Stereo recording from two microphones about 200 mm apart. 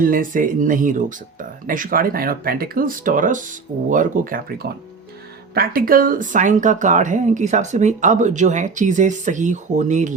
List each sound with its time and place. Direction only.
0.0 s speech: 45° right (ahead or behind)